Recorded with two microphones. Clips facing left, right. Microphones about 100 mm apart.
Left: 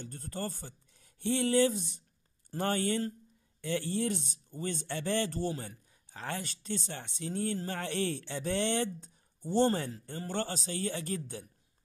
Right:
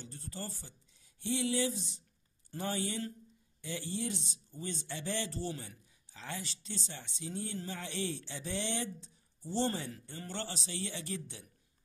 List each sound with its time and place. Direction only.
0.0 s speech: 55° left (ahead or behind)